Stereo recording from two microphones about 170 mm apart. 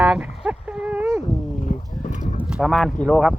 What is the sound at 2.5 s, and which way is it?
Speech, centre (ahead or behind).